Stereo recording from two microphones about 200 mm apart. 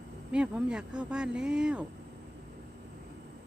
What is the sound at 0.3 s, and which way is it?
Speech, 5° right (ahead or behind).